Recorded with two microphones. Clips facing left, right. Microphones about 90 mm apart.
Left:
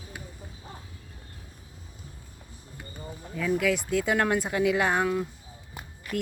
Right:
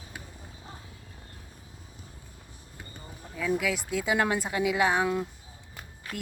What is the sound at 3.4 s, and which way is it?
Speech, centre (ahead or behind).